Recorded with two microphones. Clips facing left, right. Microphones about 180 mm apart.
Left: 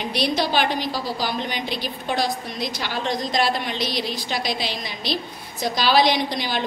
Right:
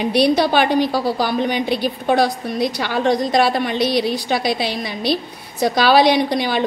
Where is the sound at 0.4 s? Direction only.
60° right (ahead or behind).